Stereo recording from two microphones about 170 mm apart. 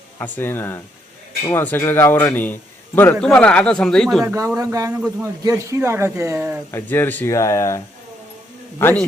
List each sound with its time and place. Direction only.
0.2 s a man's voice: 15° left (ahead or behind)
4.4 s a man's voice: 20° right (ahead or behind)
6.7 s a man's voice: 15° left (ahead or behind)
8.8 s a man's voice: 10° left (ahead or behind)